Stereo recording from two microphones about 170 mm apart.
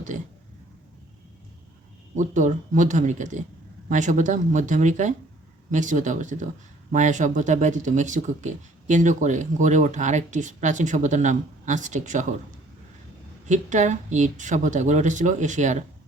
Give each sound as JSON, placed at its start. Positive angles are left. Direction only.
{"t": 2.1, "sound": "speech", "side_deg": -45}
{"t": 13.5, "sound": "speech", "side_deg": -45}